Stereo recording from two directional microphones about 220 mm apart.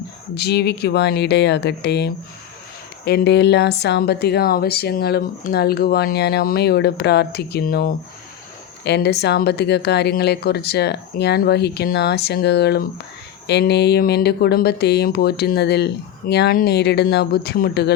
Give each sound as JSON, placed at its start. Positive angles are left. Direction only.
{"t": 0.3, "sound": "speech", "side_deg": 45}